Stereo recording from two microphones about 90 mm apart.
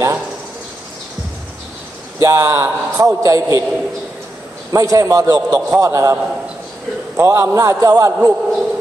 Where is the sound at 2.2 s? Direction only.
30° right (ahead or behind).